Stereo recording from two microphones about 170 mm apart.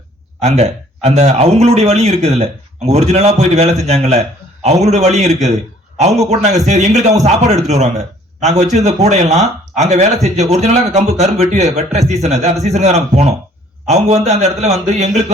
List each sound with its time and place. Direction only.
0.4 s a man's voice: 40° right (ahead or behind)